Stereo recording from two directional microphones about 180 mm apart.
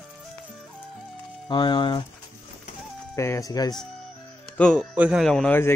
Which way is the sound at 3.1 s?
15° left (ahead or behind).